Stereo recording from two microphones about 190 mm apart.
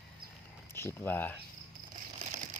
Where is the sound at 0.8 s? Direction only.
10° left (ahead or behind).